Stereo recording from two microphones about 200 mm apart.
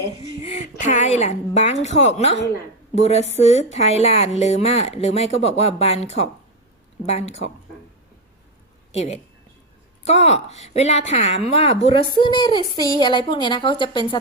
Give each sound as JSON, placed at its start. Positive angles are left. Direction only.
{"t": 0.2, "sound": "a woman's voice", "side_deg": 35}
{"t": 8.9, "sound": "a woman's voice", "side_deg": 35}